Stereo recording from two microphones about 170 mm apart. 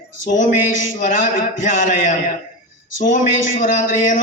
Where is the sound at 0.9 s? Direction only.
50° left (ahead or behind).